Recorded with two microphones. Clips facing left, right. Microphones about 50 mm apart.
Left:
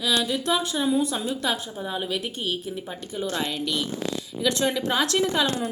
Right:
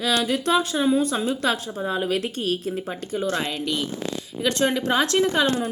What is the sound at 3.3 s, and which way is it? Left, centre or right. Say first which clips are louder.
A woman's voice: right 2 dB; right.